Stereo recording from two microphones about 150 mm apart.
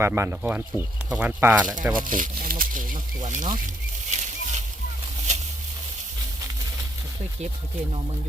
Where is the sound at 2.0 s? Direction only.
65° right (ahead or behind).